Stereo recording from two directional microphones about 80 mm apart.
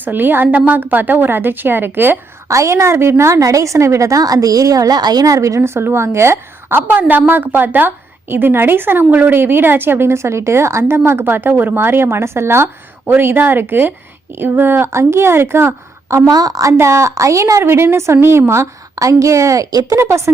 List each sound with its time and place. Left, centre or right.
0.0 s a woman's voice: right
2.5 s a woman's voice: right